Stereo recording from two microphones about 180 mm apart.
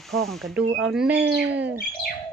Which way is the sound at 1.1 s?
70° right (ahead or behind).